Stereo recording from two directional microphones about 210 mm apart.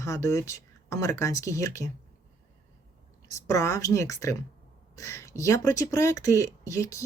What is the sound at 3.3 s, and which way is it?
Speech, 15° left (ahead or behind).